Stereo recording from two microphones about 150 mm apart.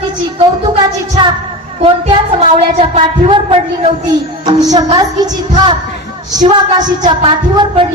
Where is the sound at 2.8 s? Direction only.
45° right (ahead or behind).